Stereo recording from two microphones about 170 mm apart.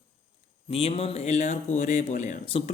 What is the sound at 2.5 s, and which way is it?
Speech, 35° left (ahead or behind).